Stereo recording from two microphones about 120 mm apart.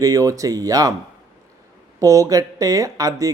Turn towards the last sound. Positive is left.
turn(degrees=-30)  # may be behind; listen again after turning